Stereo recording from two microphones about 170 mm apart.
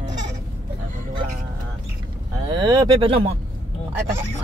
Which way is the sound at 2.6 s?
25° right (ahead or behind).